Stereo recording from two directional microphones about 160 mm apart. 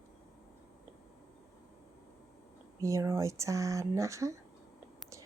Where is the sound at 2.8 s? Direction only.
20° right (ahead or behind).